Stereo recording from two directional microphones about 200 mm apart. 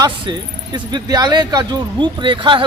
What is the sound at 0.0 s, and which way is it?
Speech, 20° right (ahead or behind).